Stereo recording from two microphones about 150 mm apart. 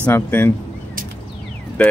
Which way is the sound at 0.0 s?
15° left (ahead or behind).